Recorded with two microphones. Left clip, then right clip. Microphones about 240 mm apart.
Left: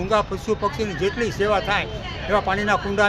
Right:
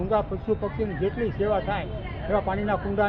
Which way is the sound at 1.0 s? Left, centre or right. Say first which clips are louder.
Left 5 dB; centre.